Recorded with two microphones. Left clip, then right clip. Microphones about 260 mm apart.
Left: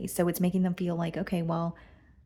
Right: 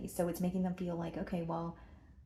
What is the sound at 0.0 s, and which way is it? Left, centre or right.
Speech, left.